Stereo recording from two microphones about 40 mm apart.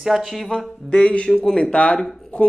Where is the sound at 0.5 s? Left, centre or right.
Left.